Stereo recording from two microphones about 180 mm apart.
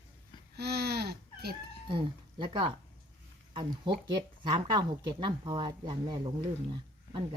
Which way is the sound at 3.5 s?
25° right (ahead or behind).